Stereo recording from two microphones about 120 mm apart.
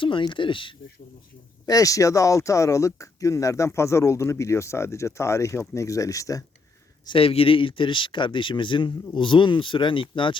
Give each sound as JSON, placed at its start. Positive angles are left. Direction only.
{"t": 0.0, "sound": "speech", "side_deg": 45}
{"t": 1.6, "sound": "speech", "side_deg": 30}
{"t": 7.0, "sound": "speech", "side_deg": 45}